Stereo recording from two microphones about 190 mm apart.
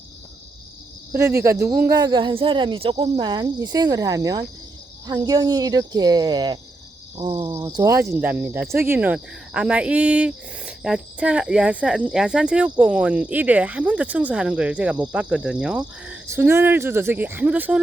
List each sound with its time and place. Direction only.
1.1 s speech: 15° right (ahead or behind)
7.5 s speech: 15° right (ahead or behind)